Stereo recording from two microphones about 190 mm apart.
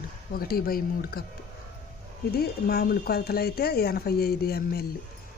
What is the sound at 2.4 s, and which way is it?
Speech, 50° left (ahead or behind).